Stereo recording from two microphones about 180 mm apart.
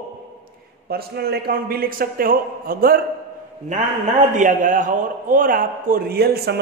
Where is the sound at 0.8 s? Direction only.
60° right (ahead or behind).